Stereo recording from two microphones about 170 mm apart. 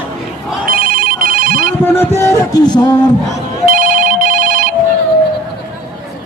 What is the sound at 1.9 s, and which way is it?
Speech, 15° left (ahead or behind).